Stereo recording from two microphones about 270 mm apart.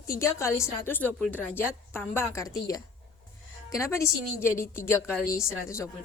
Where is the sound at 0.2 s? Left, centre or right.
Centre.